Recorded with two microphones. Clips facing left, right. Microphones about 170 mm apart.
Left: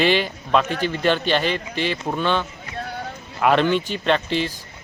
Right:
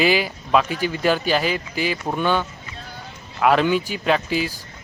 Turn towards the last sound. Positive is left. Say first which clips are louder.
# even
turn(degrees=-5)  # may be behind; listen again after turning